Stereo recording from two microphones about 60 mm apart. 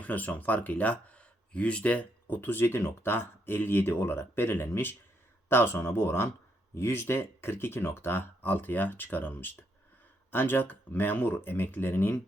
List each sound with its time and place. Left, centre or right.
0.0 s speech: left
2.2 s speech: left